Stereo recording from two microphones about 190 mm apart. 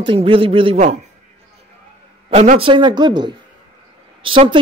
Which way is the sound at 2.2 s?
35° right (ahead or behind).